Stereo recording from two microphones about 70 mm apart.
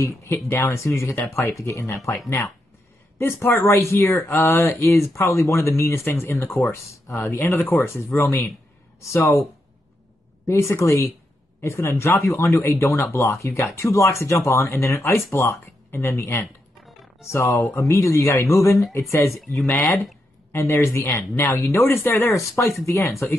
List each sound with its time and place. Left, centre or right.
0.0 s speech: left
4.9 s speech: left
6.3 s speech: left
15.1 s speech: left
15.9 s speech: left
17.7 s speech: left
19.6 s speech: left
20.5 s speech: left